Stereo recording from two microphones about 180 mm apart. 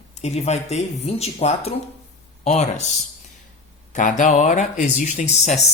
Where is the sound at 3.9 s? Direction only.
45° left (ahead or behind).